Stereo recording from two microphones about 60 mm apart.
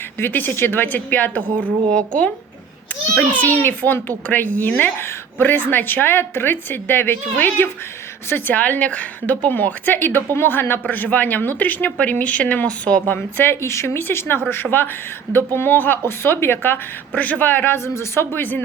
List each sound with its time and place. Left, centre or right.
0.2 s a woman's voice: left
1.9 s a woman's voice: centre
3.3 s a woman's voice: left
13.1 s a woman's voice: left
17.7 s speech: left